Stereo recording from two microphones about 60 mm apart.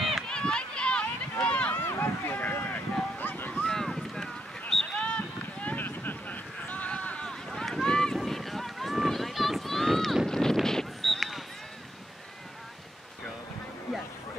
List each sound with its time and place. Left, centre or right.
0.3 s run: centre
1.9 s boat: left
3.5 s boat: centre
4.9 s run: centre
6.9 s a sound: centre
7.4 s boat: centre